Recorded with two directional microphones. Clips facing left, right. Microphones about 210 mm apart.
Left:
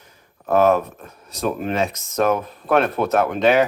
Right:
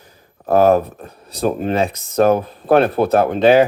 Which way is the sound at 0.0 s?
35° right (ahead or behind).